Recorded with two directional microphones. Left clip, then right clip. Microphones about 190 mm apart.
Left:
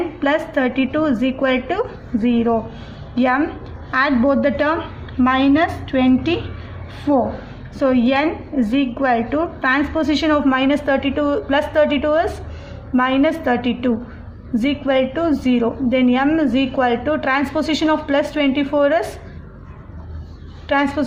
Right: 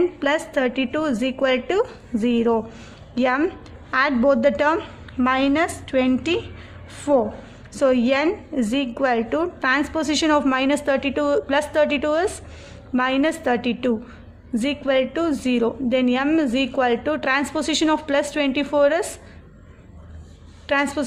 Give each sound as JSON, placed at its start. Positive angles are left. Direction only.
{"t": 0.2, "sound": "a woman's voice", "side_deg": -40}
{"t": 7.8, "sound": "a woman's voice", "side_deg": -45}
{"t": 20.7, "sound": "a woman's voice", "side_deg": -35}